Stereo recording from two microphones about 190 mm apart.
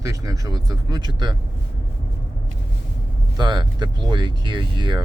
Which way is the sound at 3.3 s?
25° right (ahead or behind).